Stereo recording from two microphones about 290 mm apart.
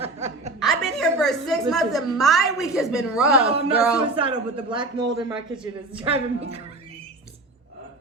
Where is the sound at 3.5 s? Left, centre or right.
Centre.